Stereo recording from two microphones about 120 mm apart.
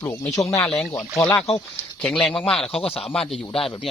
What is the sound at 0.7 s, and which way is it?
Speech, 5° left (ahead or behind).